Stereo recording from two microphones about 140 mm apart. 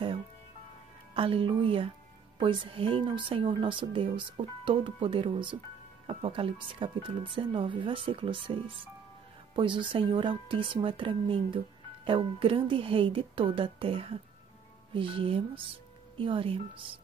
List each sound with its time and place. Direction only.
1.1 s a woman's voice: 40° right (ahead or behind)